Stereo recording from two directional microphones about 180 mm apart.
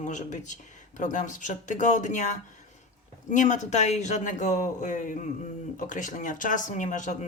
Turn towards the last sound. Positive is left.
turn(degrees=45)  # may be behind; listen again after turning